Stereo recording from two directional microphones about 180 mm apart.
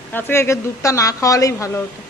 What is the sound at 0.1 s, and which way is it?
A woman's voice, 15° left (ahead or behind).